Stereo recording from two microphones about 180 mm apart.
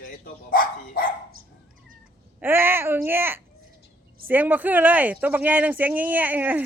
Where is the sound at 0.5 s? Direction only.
50° left (ahead or behind).